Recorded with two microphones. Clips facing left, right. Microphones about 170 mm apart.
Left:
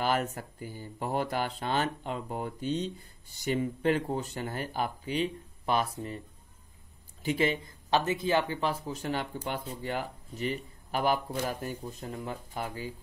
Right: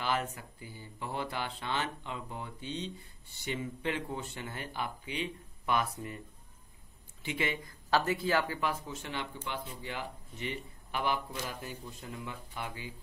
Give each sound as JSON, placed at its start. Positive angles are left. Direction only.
{"t": 0.0, "sound": "speech", "side_deg": 45}
{"t": 7.2, "sound": "speech", "side_deg": 35}
{"t": 7.6, "sound": "speech", "side_deg": 20}